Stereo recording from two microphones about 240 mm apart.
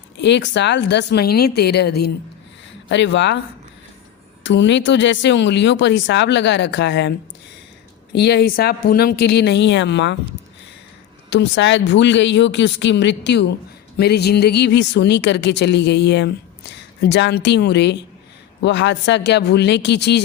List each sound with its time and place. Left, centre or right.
0.2 s speech: left
4.4 s speech: left
11.3 s speech: left